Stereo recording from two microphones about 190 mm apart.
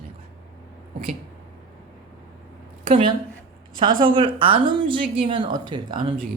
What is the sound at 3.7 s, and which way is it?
A woman's voice, 25° right (ahead or behind).